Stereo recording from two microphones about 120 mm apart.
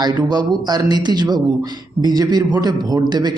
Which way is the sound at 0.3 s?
35° right (ahead or behind).